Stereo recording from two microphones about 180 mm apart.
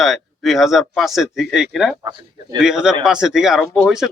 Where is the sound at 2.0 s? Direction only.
25° right (ahead or behind).